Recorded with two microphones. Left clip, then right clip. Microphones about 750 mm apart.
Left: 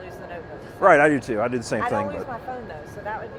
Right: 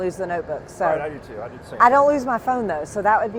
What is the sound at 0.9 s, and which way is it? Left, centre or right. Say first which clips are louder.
Speech: left 9 dB; left.